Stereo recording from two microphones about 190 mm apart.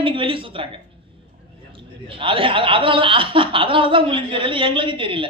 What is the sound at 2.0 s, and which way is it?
A man's voice, 25° right (ahead or behind).